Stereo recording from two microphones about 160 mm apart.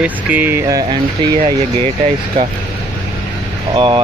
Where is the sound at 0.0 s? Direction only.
10° right (ahead or behind).